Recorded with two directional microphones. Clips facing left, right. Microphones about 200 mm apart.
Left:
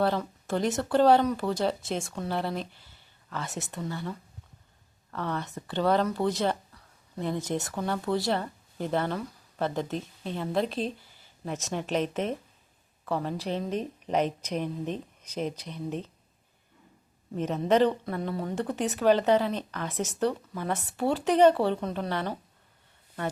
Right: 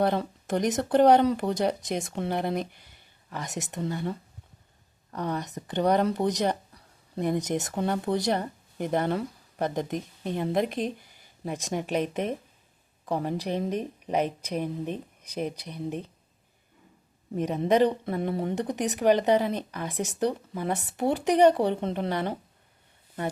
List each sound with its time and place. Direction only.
0.0 s speech: 20° right (ahead or behind)
5.1 s speech: 15° right (ahead or behind)
17.3 s speech: 10° right (ahead or behind)